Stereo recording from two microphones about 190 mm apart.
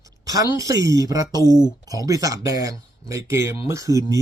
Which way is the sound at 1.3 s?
15° left (ahead or behind).